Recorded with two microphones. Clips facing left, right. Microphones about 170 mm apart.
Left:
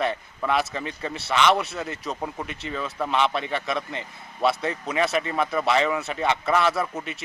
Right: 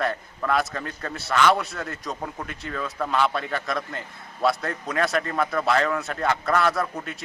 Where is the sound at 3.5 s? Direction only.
Centre (ahead or behind).